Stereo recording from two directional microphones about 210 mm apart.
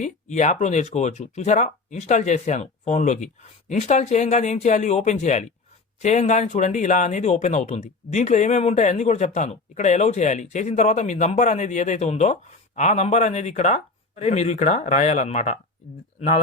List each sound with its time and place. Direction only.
0.0 s speech: 35° left (ahead or behind)